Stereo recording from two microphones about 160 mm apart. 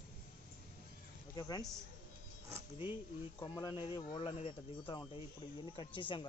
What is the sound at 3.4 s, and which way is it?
Speech, 25° left (ahead or behind).